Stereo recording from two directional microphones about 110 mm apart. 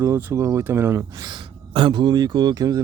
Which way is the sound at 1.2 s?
45° right (ahead or behind).